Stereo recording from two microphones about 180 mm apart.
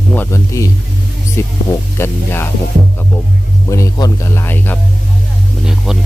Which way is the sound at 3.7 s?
15° left (ahead or behind).